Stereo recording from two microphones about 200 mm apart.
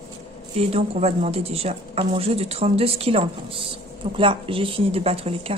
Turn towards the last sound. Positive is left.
turn(degrees=-30)  # may be behind; listen again after turning